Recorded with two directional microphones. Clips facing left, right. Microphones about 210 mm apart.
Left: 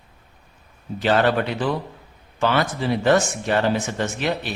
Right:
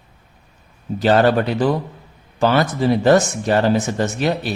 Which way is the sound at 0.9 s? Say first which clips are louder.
Right 4 dB; 40° right (ahead or behind).